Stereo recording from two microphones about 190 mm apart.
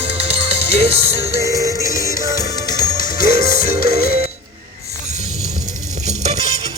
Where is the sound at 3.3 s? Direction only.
35° right (ahead or behind).